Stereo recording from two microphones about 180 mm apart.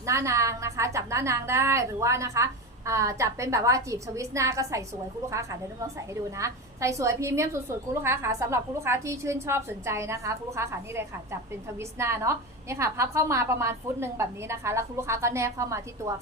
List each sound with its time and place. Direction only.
0.0 s a woman's voice: 15° right (ahead or behind)